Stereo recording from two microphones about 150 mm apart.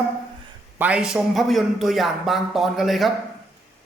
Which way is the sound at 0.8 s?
10° right (ahead or behind).